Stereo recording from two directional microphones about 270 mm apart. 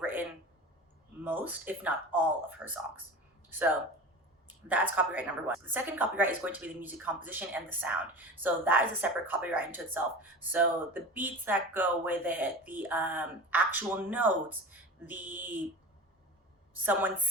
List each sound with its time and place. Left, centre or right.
0.0 s a sound: centre
1.2 s speech: centre
4.4 s speech: centre
16.8 s speech: centre